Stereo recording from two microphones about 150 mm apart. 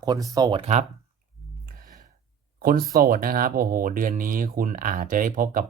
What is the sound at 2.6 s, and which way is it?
Speech, 80° right.